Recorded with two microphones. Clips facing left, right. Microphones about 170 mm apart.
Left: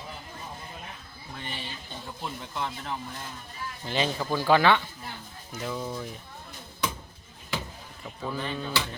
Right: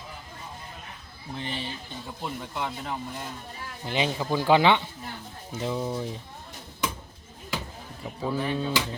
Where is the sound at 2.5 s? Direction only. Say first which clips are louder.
Left 1 dB; 5° right (ahead or behind); by 6.2 s 30° right (ahead or behind).